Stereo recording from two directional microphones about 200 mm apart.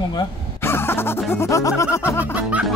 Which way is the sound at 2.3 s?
5° right (ahead or behind).